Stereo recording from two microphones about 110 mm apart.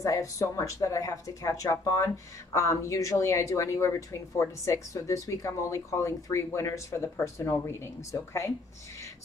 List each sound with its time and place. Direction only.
0.0 s speech: 30° left (ahead or behind)